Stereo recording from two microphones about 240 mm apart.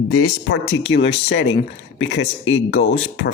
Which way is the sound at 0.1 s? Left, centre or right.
Left.